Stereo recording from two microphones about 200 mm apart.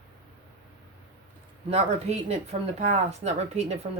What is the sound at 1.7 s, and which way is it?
A woman's voice, 30° right (ahead or behind).